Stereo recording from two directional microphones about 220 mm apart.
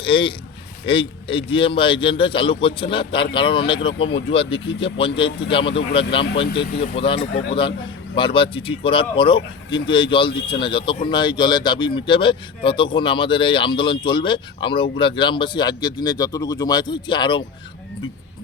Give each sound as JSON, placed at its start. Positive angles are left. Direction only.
{"t": 0.0, "sound": "speech", "side_deg": 25}